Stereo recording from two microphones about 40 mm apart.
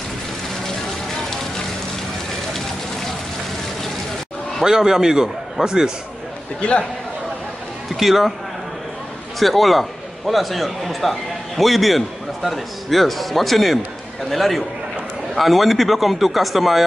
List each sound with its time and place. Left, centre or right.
4.6 s a man's voice: centre
6.6 s a man's voice: left
7.9 s a man's voice: centre
9.4 s a man's voice: centre